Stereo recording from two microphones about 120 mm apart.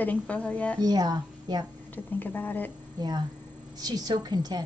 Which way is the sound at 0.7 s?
35° right (ahead or behind).